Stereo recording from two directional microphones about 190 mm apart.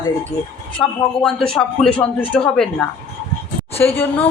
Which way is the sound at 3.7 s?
10° left (ahead or behind).